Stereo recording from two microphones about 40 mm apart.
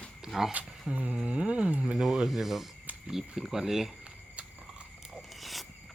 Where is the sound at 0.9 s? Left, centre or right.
Right.